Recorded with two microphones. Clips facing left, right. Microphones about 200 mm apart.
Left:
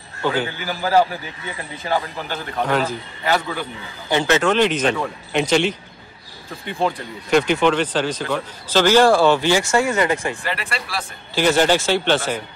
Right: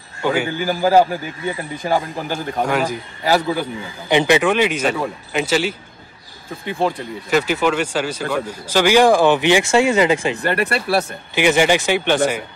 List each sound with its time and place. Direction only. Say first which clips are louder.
0.2 s a man's voice: right 2 dB; 10° right (ahead or behind)
0.6 s a man's voice: right 7 dB; 45° right (ahead or behind)
1.9 s speech: right 3 dB; 10° right (ahead or behind)
6.8 s speech: right 1 dB; 5° right (ahead or behind); by 10.4 s 25° right (ahead or behind)
10.4 s speech: right 8 dB; 60° right (ahead or behind)
11.3 s speech: right 1 dB; 15° right (ahead or behind)